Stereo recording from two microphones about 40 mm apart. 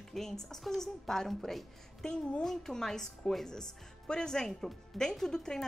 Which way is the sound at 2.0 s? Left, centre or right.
Centre.